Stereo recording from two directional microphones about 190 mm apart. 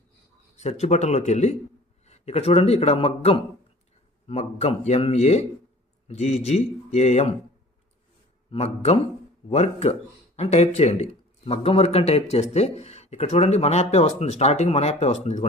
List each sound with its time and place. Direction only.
0.5 s speech: 35° left (ahead or behind)
8.4 s speech: 35° left (ahead or behind)